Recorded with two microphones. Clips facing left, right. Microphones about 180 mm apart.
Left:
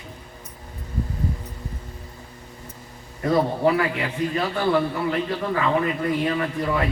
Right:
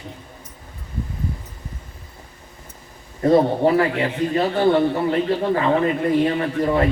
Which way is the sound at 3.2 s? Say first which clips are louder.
Right 4 dB; 35° right (ahead or behind).